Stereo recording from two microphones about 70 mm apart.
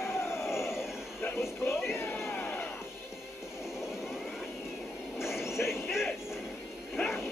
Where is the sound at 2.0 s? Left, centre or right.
Left.